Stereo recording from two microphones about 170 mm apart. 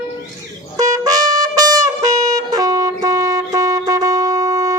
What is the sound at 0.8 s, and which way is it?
Brass instrument, 20° right (ahead or behind).